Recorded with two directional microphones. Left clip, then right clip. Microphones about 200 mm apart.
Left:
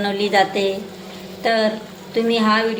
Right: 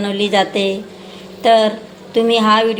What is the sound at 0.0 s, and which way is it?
A woman's voice, 20° right (ahead or behind).